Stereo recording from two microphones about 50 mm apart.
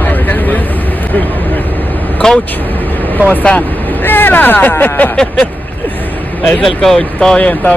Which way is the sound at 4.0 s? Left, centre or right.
Left.